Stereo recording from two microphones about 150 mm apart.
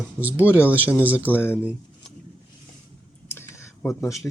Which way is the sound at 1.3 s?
15° left (ahead or behind).